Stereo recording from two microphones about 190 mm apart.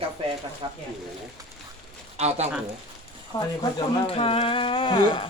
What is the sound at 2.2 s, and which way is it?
Speech, 35° right (ahead or behind).